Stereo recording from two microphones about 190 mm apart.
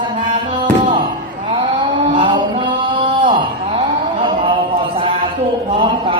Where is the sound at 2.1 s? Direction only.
25° right (ahead or behind).